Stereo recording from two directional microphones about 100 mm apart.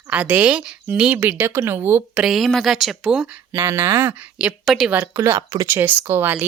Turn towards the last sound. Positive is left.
turn(degrees=-20)  # may be behind; listen again after turning